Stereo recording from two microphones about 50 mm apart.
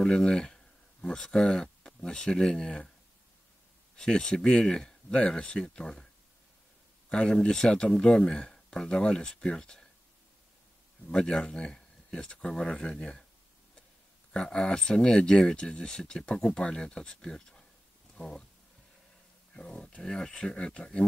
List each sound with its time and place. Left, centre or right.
0.0 s speech: centre
3.9 s speech: centre
7.1 s speech: centre
11.1 s speech: centre
14.3 s speech: centre
18.1 s a sound: centre
19.5 s speech: centre